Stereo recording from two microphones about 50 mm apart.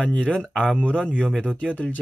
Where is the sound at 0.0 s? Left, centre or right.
Left.